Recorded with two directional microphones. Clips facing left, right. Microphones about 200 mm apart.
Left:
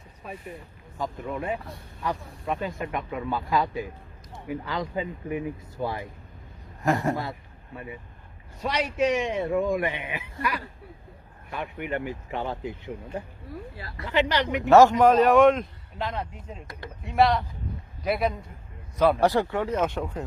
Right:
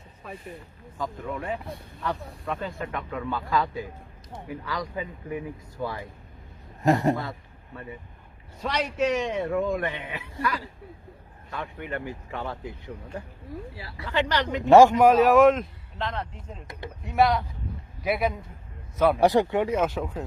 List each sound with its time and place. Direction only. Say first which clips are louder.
0.9 s speech: left 1 dB; 25° left (ahead or behind)
6.8 s speech: right 3 dB; 20° right (ahead or behind)
8.6 s speech: left 1 dB; 10° left (ahead or behind)
11.5 s speech: left 3 dB; 15° left (ahead or behind)
14.0 s speech: left 2 dB; 15° left (ahead or behind)
14.7 s a man's voice: right 1 dB; 10° right (ahead or behind)
19.2 s speech: right 2 dB; 20° right (ahead or behind); by 20.2 s centre (ahead or behind)